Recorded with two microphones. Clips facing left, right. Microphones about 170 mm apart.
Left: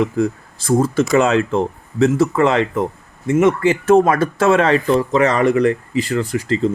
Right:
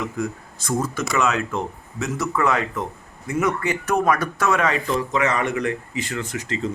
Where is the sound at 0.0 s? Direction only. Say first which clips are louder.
Left 9 dB; 30° left (ahead or behind).